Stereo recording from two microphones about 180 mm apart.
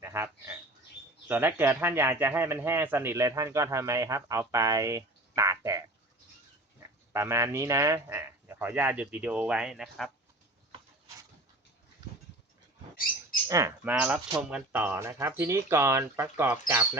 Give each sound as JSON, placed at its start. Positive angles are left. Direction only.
{"t": 0.0, "sound": "speech", "side_deg": -15}
{"t": 13.5, "sound": "speech", "side_deg": -15}